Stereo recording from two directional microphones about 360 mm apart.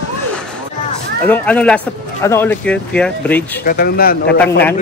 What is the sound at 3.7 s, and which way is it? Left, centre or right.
Speech, left.